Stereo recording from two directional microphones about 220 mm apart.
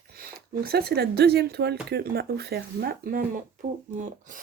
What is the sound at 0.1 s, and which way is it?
Speech, 45° right (ahead or behind).